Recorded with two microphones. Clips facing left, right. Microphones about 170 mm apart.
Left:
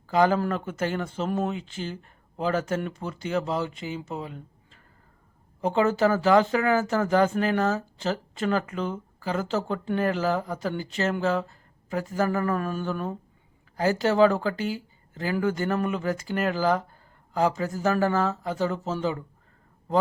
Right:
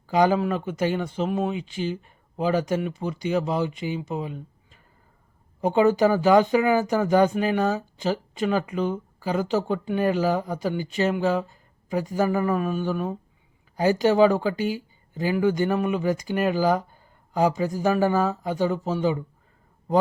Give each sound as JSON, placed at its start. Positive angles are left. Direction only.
{"t": 0.1, "sound": "speech", "side_deg": -15}